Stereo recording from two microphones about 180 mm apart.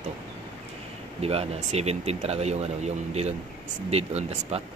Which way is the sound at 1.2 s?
35° right (ahead or behind).